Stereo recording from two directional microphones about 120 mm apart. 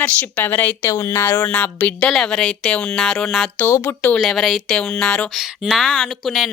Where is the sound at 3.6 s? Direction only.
20° left (ahead or behind).